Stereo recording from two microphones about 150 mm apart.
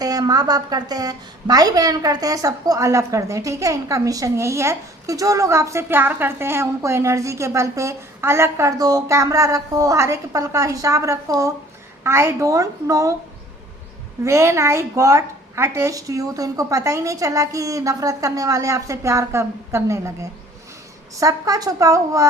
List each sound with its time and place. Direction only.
0.0 s a woman's voice: 25° right (ahead or behind)
14.3 s a woman's voice: 20° right (ahead or behind)